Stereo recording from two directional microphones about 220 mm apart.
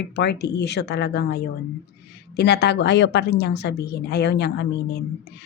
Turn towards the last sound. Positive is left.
turn(degrees=50)  # may be behind; listen again after turning